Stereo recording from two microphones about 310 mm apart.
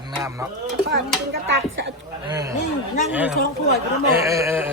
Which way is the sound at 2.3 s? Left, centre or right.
Centre.